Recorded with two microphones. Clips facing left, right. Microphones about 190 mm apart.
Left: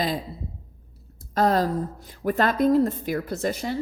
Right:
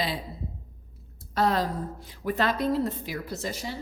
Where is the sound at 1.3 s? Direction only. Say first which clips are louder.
Left 4 dB; 45° left (ahead or behind).